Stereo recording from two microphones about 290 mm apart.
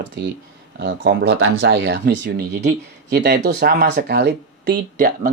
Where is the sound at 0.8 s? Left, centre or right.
Right.